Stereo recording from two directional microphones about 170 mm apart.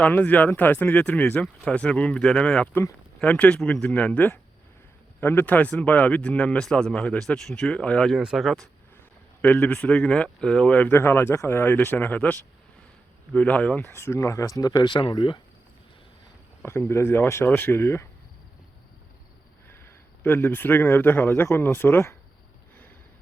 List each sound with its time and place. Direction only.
0.0 s speech: 10° left (ahead or behind); by 15.4 s 25° left (ahead or behind)
16.6 s speech: 15° left (ahead or behind)
19.6 s speech: 15° left (ahead or behind)